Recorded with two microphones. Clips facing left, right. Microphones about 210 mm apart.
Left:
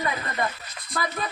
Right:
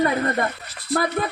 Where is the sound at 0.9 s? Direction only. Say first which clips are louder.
Right 8 dB; 60° right (ahead or behind).